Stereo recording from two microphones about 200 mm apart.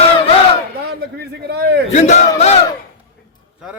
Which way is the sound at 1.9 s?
35° left (ahead or behind).